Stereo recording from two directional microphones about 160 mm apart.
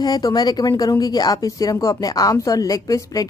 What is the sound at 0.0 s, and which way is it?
A woman's voice, 25° left (ahead or behind).